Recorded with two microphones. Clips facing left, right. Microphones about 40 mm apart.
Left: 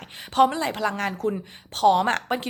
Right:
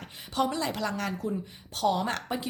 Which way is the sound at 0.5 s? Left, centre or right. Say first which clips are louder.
Left 5 dB; left.